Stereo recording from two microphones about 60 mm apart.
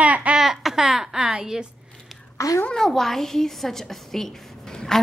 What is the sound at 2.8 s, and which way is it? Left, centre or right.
A child's voice, centre.